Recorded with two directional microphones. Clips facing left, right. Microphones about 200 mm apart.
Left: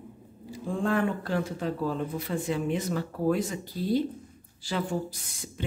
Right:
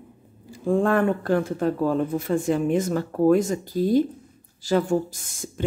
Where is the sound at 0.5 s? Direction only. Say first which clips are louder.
Right 7 dB; 55° right (ahead or behind).